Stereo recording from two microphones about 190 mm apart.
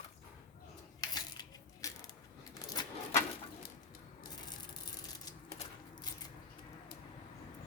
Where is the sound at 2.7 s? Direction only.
20° left (ahead or behind).